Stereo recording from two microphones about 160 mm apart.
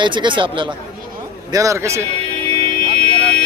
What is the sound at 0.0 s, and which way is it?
Speech, 30° right (ahead or behind).